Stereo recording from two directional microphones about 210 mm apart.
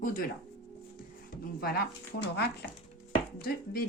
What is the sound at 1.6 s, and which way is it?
Speech, 50° left (ahead or behind).